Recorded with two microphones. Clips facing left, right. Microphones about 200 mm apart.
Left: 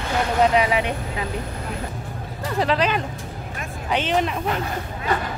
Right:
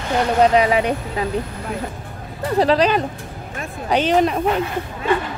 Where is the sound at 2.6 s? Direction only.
35° right (ahead or behind).